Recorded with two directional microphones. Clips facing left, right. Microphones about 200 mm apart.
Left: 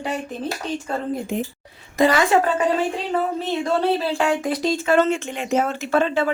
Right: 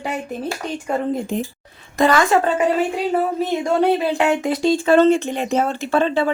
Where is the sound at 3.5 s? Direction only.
15° right (ahead or behind).